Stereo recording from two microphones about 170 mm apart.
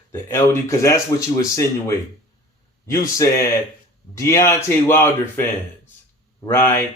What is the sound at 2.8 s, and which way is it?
Speech, 20° left (ahead or behind).